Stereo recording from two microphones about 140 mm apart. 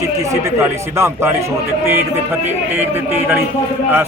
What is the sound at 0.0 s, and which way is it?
Speech, 25° right (ahead or behind).